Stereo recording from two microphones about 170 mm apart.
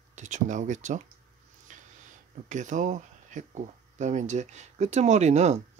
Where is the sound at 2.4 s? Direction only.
45° right (ahead or behind).